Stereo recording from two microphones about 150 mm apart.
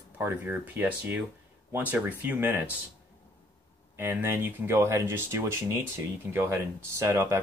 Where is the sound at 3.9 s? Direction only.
15° right (ahead or behind).